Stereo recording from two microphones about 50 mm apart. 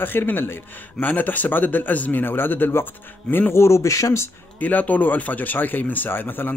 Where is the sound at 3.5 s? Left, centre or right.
Left.